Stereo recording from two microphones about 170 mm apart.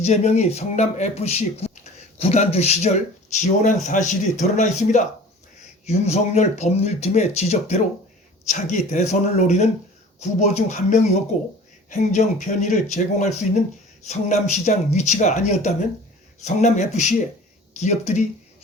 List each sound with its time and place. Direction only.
0.0 s speech: 40° left (ahead or behind)